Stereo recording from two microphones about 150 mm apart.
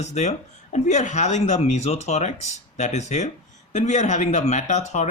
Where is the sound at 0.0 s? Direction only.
50° left (ahead or behind).